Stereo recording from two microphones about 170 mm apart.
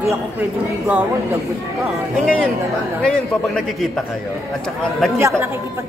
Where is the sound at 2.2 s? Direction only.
5° left (ahead or behind).